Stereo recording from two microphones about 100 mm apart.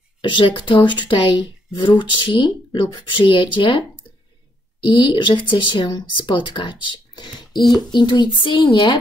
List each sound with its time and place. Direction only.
0.2 s speech: 55° left (ahead or behind)
4.8 s a woman's voice: 55° left (ahead or behind)